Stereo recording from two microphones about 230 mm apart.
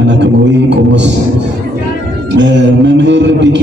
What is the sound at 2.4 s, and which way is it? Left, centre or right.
Speech, right.